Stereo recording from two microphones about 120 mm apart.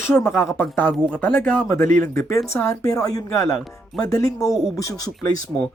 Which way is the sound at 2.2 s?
25° left (ahead or behind).